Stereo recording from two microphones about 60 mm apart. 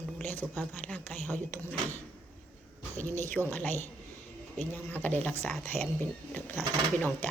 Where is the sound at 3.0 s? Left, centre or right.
Left.